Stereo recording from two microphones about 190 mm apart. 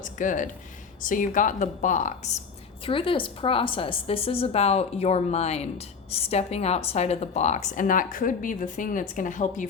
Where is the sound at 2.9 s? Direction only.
25° left (ahead or behind).